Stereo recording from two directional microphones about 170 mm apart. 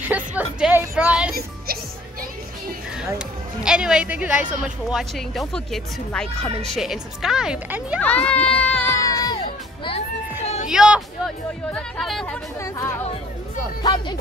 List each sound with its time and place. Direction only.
0.1 s a woman's voice: 10° right (ahead or behind)
3.6 s a woman's voice: 5° right (ahead or behind)
8.0 s a child's voice: 10° left (ahead or behind)
8.8 s music: 20° left (ahead or behind); by 10.7 s 40° left (ahead or behind)
10.7 s a woman's voice: 5° right (ahead or behind)
12.5 s a child's voice: 15° left (ahead or behind)
13.8 s music: 25° left (ahead or behind)